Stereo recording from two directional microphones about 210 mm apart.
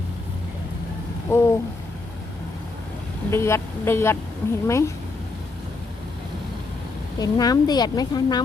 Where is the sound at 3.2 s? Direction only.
10° left (ahead or behind).